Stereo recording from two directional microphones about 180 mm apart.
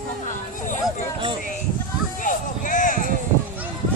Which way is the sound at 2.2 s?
45° left (ahead or behind).